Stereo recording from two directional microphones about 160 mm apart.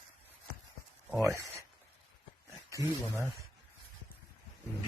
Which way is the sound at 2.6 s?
20° right (ahead or behind).